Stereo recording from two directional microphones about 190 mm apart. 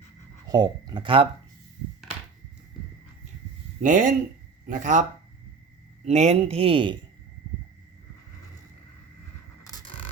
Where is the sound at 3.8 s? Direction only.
45° right (ahead or behind).